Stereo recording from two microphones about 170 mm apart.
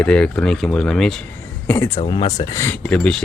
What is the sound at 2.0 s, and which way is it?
Speech, 25° left (ahead or behind).